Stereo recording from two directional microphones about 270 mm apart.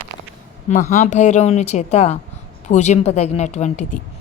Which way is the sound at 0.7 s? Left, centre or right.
Left.